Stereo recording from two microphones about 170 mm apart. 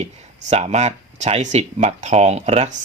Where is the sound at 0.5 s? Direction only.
40° right (ahead or behind).